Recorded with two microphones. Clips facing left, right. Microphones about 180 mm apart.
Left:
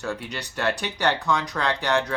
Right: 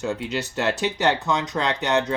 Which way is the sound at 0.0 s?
20° right (ahead or behind).